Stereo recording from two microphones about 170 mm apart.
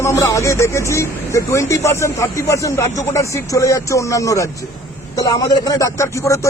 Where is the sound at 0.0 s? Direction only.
20° left (ahead or behind).